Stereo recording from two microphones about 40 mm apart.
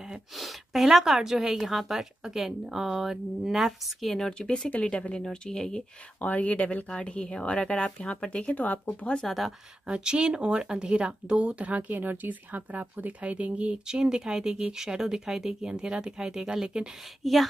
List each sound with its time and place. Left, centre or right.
0.4 s a woman's voice: centre
4.2 s speech: left
6.2 s speech: left
6.9 s speech: left
8.5 s speech: left
9.2 s speech: centre
9.8 s speech: right
13.8 s speech: centre
17.2 s speech: centre